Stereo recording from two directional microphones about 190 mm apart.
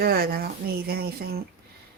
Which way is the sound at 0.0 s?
55° right (ahead or behind).